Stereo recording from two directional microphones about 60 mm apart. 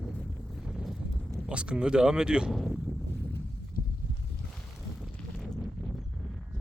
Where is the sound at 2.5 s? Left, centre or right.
Centre.